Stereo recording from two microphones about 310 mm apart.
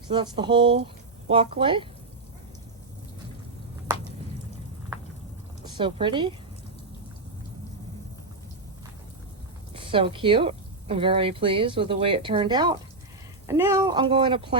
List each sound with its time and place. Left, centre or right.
0.1 s a woman's voice: centre
5.6 s speech: centre
9.7 s a woman's voice: centre